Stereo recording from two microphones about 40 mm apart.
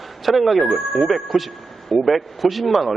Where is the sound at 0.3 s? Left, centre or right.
Centre.